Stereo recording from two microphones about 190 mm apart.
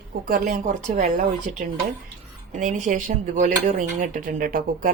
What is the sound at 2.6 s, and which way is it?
A woman's voice, 40° right (ahead or behind).